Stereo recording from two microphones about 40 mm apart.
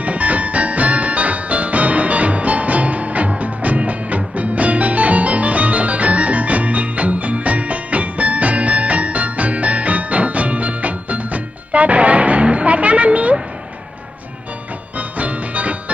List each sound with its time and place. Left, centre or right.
0.0 s music: right
14.9 s music: right